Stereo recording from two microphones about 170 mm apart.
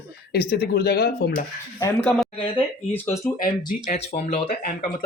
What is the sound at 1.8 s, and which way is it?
Speech, 15° left (ahead or behind).